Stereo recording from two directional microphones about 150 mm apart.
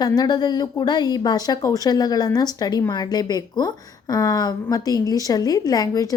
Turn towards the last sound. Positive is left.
turn(degrees=25)  # may be behind; listen again after turning